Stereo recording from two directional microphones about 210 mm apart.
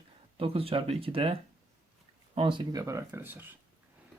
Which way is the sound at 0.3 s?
25° right (ahead or behind).